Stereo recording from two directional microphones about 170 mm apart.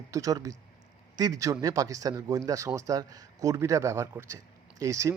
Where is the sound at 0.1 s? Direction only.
20° right (ahead or behind).